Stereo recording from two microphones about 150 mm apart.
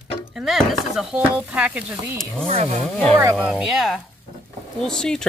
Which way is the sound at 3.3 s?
5° right (ahead or behind).